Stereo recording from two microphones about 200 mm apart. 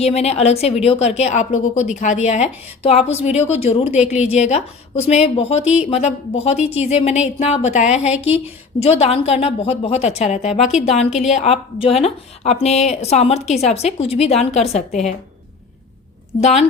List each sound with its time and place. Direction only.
0.0 s a woman's voice: 30° left (ahead or behind)